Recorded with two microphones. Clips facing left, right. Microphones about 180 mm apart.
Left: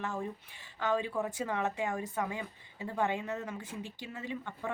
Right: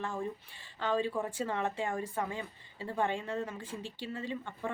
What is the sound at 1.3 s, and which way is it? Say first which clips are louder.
Speech: even; 15° left (ahead or behind).